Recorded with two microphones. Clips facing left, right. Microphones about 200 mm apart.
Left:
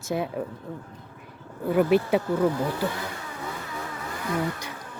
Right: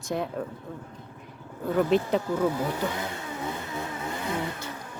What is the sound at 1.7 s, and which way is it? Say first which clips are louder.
Speech: left 2 dB; 10° left (ahead or behind).